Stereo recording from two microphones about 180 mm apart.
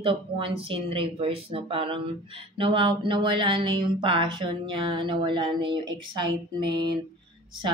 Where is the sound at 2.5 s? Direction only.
30° right (ahead or behind).